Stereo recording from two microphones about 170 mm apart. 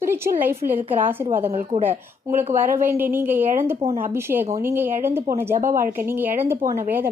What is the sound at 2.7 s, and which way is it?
A woman's voice, 15° right (ahead or behind).